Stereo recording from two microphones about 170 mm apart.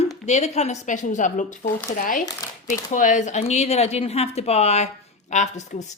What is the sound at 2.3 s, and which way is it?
Speech, 20° left (ahead or behind).